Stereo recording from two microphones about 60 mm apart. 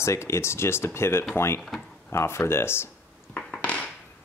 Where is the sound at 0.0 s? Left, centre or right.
Left.